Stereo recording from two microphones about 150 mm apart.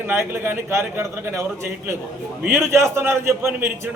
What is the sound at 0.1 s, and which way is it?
A man's voice, 15° right (ahead or behind).